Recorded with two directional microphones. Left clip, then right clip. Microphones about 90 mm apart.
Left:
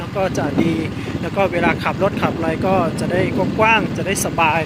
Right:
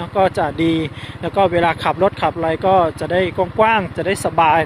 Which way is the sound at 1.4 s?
45° right (ahead or behind).